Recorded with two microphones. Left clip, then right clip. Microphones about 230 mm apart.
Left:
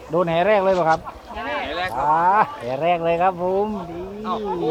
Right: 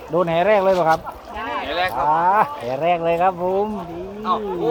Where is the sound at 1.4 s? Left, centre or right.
Centre.